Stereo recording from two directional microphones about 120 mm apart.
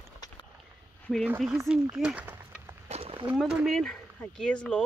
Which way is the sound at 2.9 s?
55° right (ahead or behind).